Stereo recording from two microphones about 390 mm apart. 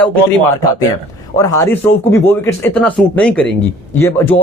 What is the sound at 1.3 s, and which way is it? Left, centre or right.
Speech, centre.